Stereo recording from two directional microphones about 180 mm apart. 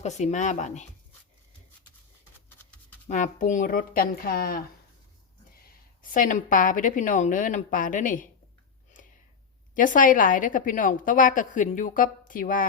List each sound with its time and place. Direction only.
0.0 s speech: 40° left (ahead or behind)
3.1 s a woman's voice: 45° left (ahead or behind)
6.0 s a woman's voice: 50° left (ahead or behind)
9.7 s a woman's voice: 45° left (ahead or behind)